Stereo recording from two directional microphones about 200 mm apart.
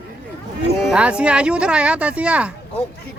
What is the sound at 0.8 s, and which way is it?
Speech, 5° right (ahead or behind).